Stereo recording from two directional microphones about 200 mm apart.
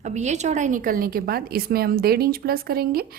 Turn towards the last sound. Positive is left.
turn(degrees=-50)  # may be behind; listen again after turning